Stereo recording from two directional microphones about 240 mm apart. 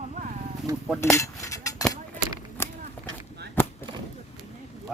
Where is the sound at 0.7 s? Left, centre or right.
Centre.